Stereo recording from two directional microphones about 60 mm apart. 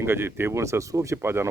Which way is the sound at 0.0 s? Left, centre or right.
Right.